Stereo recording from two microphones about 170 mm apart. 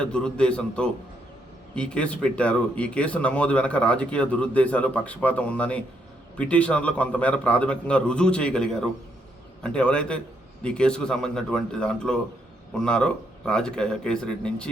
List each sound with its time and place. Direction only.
0.0 s speech: 5° left (ahead or behind)